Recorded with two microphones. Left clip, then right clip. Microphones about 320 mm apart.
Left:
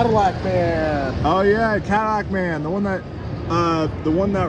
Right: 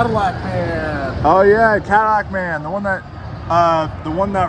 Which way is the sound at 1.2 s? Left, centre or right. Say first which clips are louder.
Right 7 dB; centre.